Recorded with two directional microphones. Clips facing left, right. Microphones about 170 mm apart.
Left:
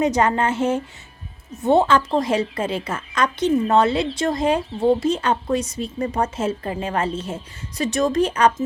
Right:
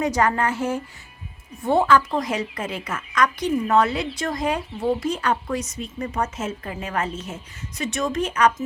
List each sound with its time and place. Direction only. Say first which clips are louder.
0.0 s speech: left 3 dB; 20° left (ahead or behind)